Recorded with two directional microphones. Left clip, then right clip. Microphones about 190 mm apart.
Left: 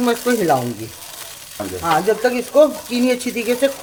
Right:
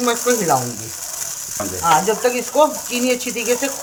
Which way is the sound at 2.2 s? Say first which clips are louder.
Left 2 dB; 55° left (ahead or behind).